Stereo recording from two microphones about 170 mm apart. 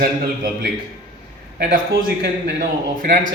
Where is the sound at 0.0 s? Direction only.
60° right (ahead or behind).